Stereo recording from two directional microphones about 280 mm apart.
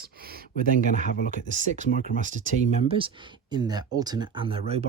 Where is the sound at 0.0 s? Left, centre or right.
Right.